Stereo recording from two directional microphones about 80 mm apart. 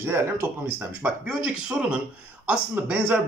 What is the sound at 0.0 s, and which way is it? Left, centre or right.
Speech, right.